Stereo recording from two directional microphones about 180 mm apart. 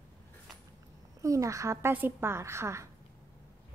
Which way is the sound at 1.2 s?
15° right (ahead or behind).